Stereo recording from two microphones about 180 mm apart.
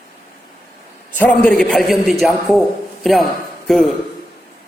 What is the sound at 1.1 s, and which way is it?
A man's voice, 10° left (ahead or behind).